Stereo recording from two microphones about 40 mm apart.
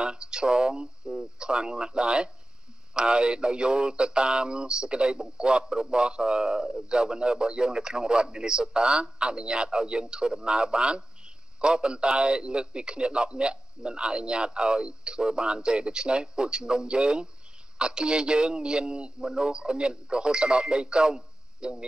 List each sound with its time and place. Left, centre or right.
0.0 s a man's voice: right